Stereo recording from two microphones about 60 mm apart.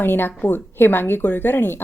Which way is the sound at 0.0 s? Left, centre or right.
Left.